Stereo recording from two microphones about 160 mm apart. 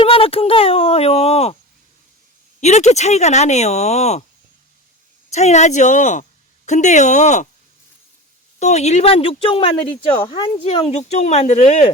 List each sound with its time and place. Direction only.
0.0 s a sound: 35° left (ahead or behind)
2.6 s speech: 45° left (ahead or behind)
5.3 s speech: 45° left (ahead or behind)
8.5 s speech: 45° left (ahead or behind)